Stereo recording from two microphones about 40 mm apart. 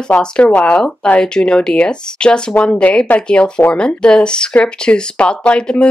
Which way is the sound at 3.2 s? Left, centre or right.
Left.